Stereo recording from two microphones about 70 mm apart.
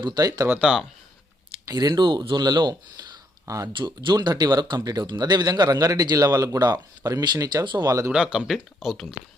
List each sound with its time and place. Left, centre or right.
0.0 s speech: right
0.6 s speech: centre
1.6 s speech: right
3.4 s speech: right
3.7 s speech: right
4.8 s a man's voice: right
8.1 s speech: centre